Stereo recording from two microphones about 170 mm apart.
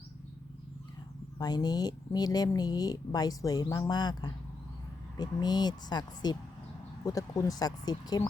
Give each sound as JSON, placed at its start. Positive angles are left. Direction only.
{"t": 1.4, "sound": "speech", "side_deg": 25}